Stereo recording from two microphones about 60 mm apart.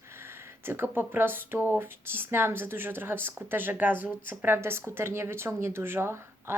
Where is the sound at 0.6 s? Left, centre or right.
Right.